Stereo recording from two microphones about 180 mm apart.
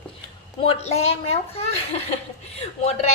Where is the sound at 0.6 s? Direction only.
35° left (ahead or behind).